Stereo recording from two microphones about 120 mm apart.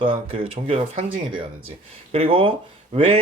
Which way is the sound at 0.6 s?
70° right (ahead or behind).